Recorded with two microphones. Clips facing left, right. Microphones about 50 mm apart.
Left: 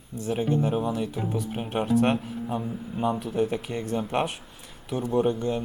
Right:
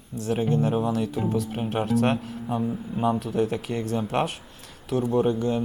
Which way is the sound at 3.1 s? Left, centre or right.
Centre.